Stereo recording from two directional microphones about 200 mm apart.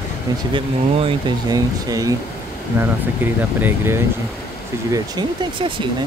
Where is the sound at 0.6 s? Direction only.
25° right (ahead or behind).